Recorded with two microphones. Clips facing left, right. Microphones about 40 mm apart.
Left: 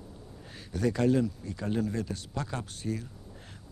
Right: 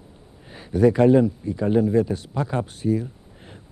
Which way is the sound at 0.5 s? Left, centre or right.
Centre.